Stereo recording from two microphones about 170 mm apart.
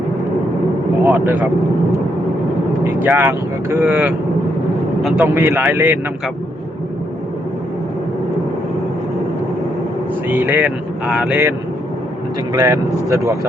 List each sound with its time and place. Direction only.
1.0 s speech: 10° right (ahead or behind)
2.8 s speech: 10° right (ahead or behind)
10.2 s speech: 10° right (ahead or behind)
12.5 s speech: 20° right (ahead or behind)